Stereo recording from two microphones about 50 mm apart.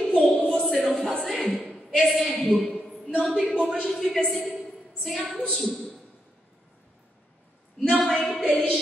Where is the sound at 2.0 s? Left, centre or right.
Centre.